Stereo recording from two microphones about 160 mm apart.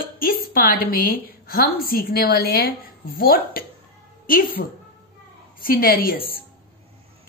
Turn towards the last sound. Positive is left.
turn(degrees=70)  # may be behind; listen again after turning